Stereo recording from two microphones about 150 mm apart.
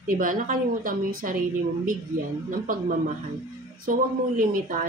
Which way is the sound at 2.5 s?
65° right (ahead or behind).